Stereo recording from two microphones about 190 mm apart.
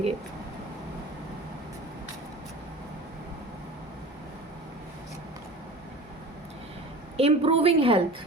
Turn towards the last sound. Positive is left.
turn(degrees=-30)  # may be behind; listen again after turning